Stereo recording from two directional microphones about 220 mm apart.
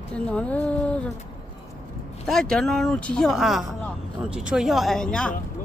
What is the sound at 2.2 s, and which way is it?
Speech, centre (ahead or behind).